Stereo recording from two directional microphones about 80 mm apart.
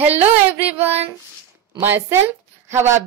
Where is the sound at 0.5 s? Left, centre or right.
Right.